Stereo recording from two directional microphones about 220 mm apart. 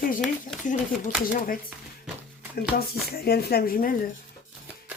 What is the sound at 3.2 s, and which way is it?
Speech, 45° left (ahead or behind).